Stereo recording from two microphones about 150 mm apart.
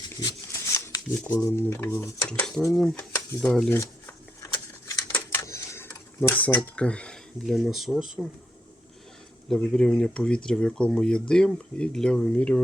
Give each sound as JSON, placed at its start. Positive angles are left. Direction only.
{"t": 0.2, "sound": "shuffling cards", "side_deg": 20}
{"t": 2.4, "sound": "speech", "side_deg": 0}
{"t": 4.4, "sound": "typewriter", "side_deg": 20}
{"t": 6.7, "sound": "speech", "side_deg": 5}
{"t": 9.5, "sound": "speech", "side_deg": 5}